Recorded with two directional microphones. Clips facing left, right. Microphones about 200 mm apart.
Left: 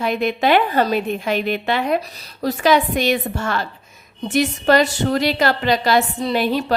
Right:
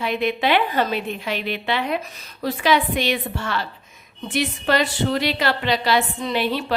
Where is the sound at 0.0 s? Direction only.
45° left (ahead or behind).